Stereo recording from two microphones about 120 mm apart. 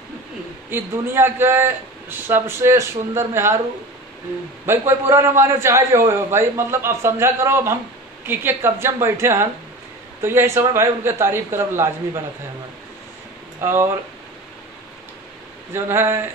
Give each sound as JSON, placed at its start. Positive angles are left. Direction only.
{"t": 0.7, "sound": "a man's voice", "side_deg": -20}
{"t": 4.6, "sound": "a man's voice", "side_deg": -20}
{"t": 13.6, "sound": "speech", "side_deg": -20}
{"t": 15.7, "sound": "a man's voice", "side_deg": -20}